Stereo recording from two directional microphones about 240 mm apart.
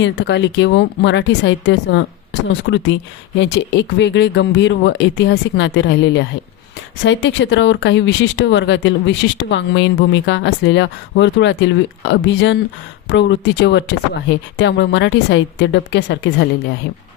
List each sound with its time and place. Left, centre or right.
0.0 s speech: left